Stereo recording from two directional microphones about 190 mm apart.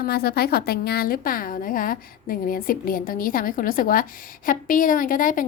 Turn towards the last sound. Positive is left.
turn(degrees=45)  # may be behind; listen again after turning